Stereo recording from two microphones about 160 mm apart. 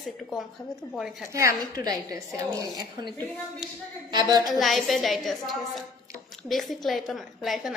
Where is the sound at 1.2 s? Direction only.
20° right (ahead or behind).